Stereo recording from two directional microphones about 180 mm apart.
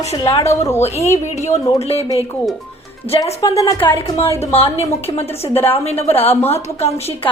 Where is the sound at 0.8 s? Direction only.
40° left (ahead or behind).